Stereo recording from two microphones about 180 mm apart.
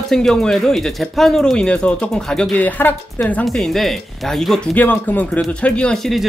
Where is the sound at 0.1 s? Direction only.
Centre (ahead or behind).